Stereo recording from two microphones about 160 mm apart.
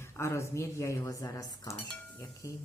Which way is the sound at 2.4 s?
20° left (ahead or behind).